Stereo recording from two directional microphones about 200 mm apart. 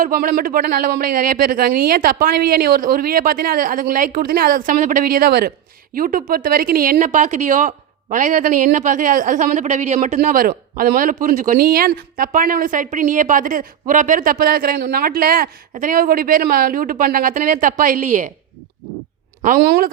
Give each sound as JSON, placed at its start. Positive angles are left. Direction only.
{"t": 0.0, "sound": "a man's voice", "side_deg": -45}
{"t": 19.4, "sound": "a man's voice", "side_deg": -45}